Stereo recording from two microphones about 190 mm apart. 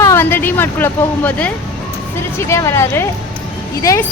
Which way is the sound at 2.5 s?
15° left (ahead or behind).